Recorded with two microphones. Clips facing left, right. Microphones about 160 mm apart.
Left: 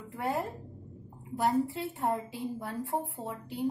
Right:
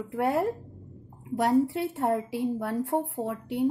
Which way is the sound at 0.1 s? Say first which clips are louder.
Right 7 dB; 70° right (ahead or behind).